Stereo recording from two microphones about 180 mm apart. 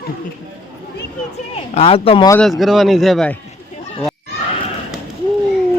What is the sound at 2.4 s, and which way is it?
Speech, centre (ahead or behind).